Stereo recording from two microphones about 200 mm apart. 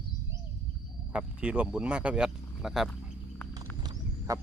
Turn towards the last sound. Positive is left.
turn(degrees=-20)  # may be behind; listen again after turning